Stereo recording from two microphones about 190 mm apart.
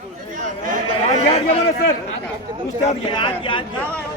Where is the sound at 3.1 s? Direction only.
25° left (ahead or behind).